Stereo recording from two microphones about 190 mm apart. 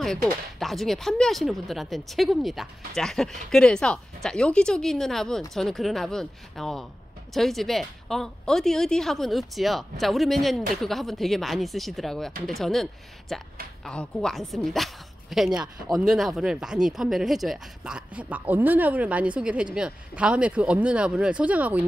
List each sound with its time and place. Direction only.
0.0 s speech: centre (ahead or behind)